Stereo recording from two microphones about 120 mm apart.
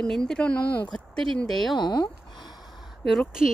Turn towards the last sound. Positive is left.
turn(degrees=0)  # may be behind; listen again after turning